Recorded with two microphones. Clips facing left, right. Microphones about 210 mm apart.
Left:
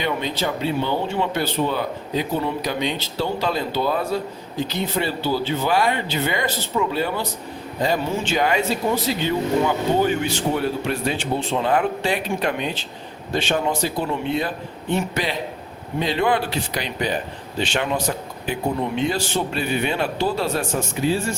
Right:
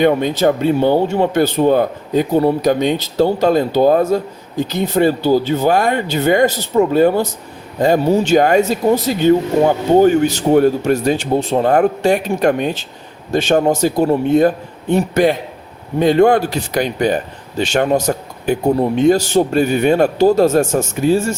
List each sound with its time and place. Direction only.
0.0 s speech: 50° right (ahead or behind)